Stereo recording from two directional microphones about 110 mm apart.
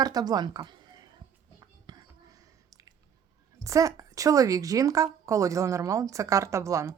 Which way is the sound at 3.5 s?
30° right (ahead or behind).